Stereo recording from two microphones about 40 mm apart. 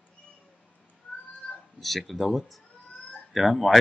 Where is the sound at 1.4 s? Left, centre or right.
Left.